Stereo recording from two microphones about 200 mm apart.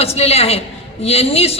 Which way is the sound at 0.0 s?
30° left (ahead or behind).